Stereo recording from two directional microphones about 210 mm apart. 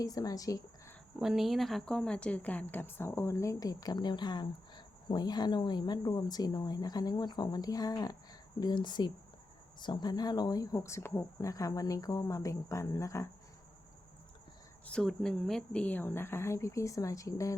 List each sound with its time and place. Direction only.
0.0 s speech: 15° left (ahead or behind)
1.2 s a woman's voice: centre (ahead or behind); by 13.2 s 15° left (ahead or behind)
14.8 s speech: 5° left (ahead or behind)